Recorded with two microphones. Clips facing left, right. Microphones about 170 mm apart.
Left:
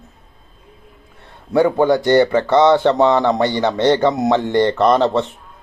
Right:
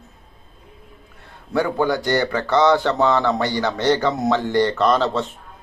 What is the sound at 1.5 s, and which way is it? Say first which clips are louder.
Speech: left 6 dB; 20° left (ahead or behind).